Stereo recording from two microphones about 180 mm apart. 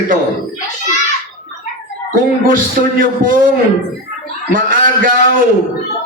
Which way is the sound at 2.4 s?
50° right (ahead or behind).